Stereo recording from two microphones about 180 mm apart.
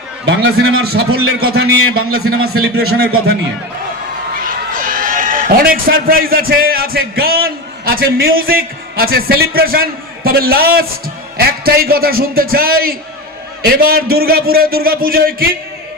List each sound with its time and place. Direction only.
0.3 s a man's voice: 90° right; by 3.3 s 60° right (ahead or behind)
4.4 s a man's voice: 50° right (ahead or behind)